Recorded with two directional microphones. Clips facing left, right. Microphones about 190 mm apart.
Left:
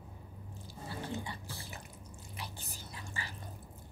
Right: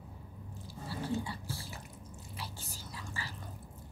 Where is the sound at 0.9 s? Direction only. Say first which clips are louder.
Right 4 dB; 20° left (ahead or behind).